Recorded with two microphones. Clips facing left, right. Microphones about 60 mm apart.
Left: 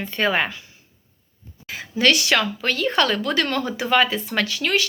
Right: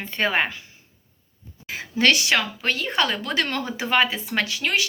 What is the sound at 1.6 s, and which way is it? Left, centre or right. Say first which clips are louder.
Speech: left 1 dB; right.